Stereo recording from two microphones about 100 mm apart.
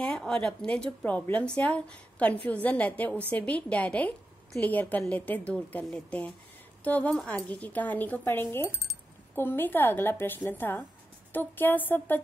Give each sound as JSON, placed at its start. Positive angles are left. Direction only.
{"t": 0.0, "sound": "a woman's voice", "side_deg": 5}